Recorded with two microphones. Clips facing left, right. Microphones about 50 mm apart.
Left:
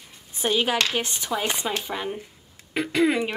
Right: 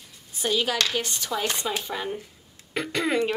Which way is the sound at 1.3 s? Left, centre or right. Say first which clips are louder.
Left 1 dB; centre.